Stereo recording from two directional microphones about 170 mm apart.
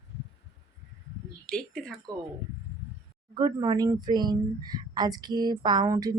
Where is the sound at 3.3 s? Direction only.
25° right (ahead or behind).